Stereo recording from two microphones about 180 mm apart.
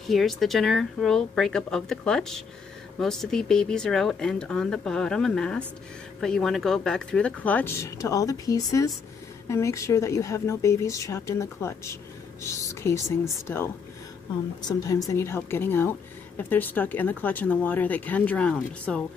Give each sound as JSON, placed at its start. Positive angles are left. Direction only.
{"t": 0.0, "sound": "a woman's voice", "side_deg": 0}
{"t": 15.0, "sound": "a woman's voice", "side_deg": 15}